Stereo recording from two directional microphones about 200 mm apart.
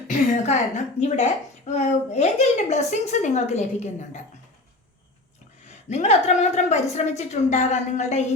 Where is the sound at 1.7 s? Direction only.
35° left (ahead or behind).